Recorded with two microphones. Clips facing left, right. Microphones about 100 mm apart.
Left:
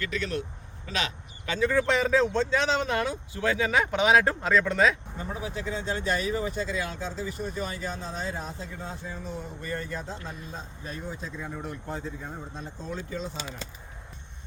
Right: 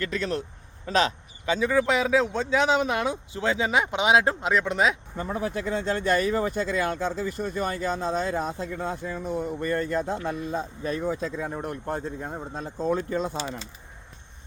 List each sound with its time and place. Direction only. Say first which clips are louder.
0.0 s speech: right 3 dB; 35° right (ahead or behind)
1.5 s speech: right 2 dB; 15° right (ahead or behind)
5.1 s speech: right 5 dB; 55° right (ahead or behind)